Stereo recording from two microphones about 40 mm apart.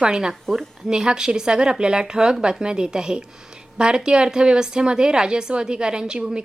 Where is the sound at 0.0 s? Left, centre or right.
Centre.